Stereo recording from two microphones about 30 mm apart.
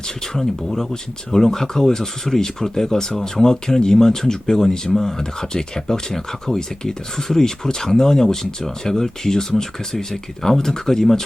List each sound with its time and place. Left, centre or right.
0.3 s speech: centre